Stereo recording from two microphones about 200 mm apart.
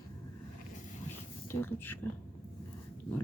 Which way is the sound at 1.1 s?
10° left (ahead or behind).